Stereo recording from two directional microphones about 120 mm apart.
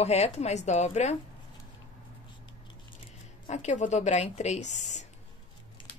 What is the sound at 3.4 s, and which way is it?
Speech, 75° left (ahead or behind).